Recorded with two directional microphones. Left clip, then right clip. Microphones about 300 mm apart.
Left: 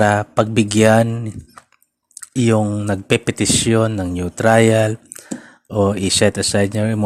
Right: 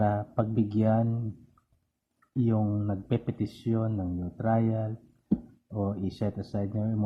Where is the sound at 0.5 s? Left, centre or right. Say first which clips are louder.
Left 15 dB; left.